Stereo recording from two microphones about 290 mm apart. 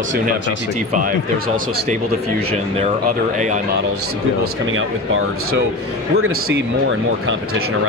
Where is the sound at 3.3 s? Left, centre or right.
Right.